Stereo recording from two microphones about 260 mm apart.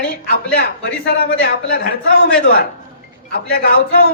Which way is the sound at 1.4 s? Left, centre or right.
Left.